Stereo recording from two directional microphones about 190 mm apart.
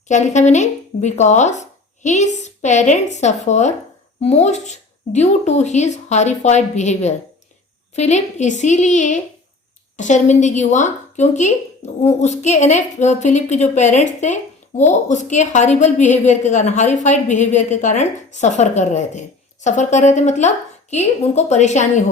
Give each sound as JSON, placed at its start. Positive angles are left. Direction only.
{"t": 0.1, "sound": "a woman's voice", "side_deg": 40}